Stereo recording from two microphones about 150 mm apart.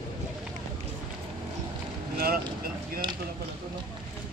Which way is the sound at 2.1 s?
85° right.